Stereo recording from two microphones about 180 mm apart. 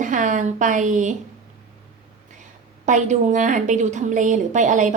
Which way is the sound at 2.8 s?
40° right (ahead or behind).